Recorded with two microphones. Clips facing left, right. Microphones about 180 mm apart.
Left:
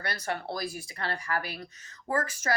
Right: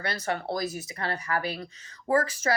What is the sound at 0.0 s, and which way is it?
Speech, 25° right (ahead or behind).